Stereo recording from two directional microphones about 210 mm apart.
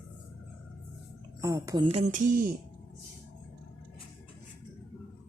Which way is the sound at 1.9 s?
30° right (ahead or behind).